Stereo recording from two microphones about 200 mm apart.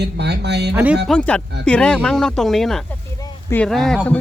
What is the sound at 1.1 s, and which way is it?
Speech, 5° left (ahead or behind).